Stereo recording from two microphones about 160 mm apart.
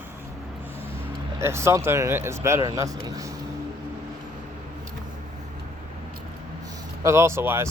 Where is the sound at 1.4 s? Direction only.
15° right (ahead or behind).